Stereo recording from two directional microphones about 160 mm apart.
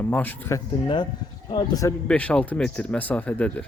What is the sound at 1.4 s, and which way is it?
Speech, 25° left (ahead or behind).